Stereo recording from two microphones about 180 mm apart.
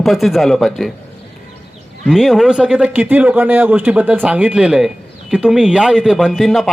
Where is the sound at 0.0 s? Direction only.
Centre (ahead or behind).